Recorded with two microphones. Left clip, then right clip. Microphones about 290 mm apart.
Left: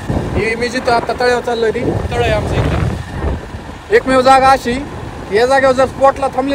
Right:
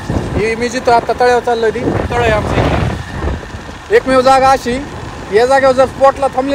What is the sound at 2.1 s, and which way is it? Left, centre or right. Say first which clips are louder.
Speech: right 3 dB; right.